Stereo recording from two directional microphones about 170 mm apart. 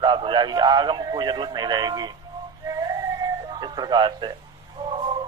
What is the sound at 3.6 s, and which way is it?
Speech, 25° right (ahead or behind).